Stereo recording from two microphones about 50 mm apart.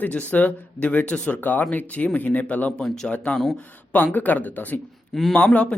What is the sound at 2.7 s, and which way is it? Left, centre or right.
Speech, centre.